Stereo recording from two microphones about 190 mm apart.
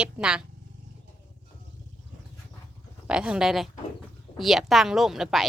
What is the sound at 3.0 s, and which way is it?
A woman's voice, 5° right (ahead or behind).